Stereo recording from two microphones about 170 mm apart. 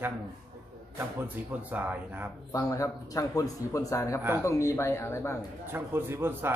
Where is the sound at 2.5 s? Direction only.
20° left (ahead or behind).